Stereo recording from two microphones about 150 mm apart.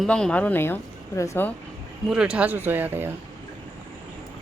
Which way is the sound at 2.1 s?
5° right (ahead or behind).